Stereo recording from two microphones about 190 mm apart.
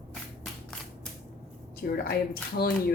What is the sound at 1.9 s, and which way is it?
Speech, 55° left (ahead or behind).